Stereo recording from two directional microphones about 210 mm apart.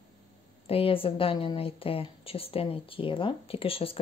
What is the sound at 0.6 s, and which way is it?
Speech, 25° left (ahead or behind).